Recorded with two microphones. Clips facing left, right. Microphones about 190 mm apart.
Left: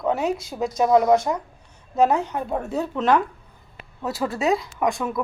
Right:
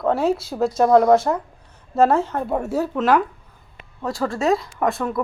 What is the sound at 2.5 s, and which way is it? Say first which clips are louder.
Speech: right 3 dB; 5° right (ahead or behind).